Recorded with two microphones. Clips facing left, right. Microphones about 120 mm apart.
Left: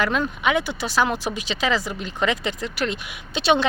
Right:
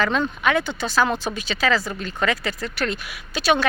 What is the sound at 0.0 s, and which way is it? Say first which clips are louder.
Speech: right 1 dB; 10° left (ahead or behind).